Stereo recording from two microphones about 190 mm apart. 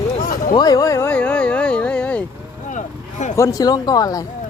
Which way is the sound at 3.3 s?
15° left (ahead or behind).